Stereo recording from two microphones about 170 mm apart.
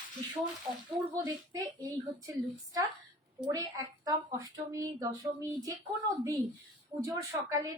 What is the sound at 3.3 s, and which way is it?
A woman's voice, 20° right (ahead or behind).